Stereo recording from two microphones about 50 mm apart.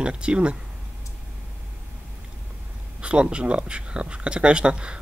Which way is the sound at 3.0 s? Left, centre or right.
Right.